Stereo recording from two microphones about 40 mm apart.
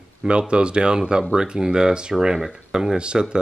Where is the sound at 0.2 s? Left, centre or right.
Right.